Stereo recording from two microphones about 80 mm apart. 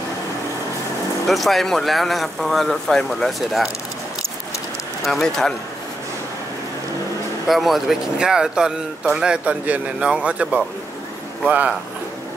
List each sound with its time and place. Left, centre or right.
1.2 s speech: centre
5.0 s speech: centre
7.4 s speech: centre